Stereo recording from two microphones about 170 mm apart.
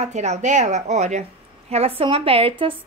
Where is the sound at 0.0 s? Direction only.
40° right (ahead or behind).